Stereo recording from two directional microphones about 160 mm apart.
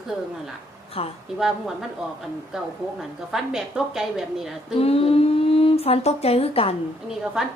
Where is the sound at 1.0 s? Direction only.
35° left (ahead or behind).